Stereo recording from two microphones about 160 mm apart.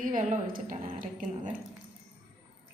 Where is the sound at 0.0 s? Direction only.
55° right (ahead or behind).